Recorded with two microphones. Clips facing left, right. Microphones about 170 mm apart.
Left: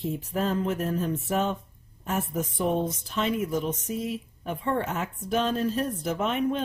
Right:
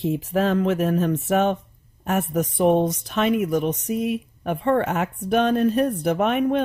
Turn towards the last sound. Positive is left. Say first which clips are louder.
# right 6 dB
turn(degrees=-65)  # may be behind; listen again after turning